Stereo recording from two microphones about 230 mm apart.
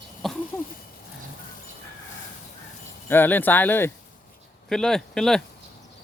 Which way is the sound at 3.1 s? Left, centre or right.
Centre.